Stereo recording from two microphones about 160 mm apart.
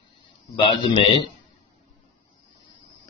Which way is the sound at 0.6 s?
30° left (ahead or behind).